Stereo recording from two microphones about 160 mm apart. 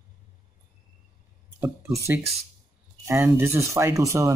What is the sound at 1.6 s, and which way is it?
Speech, 15° right (ahead or behind).